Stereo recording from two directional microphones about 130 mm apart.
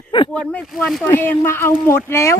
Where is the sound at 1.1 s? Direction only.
15° left (ahead or behind).